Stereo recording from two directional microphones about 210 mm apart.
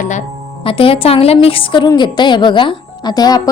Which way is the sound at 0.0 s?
35° left (ahead or behind).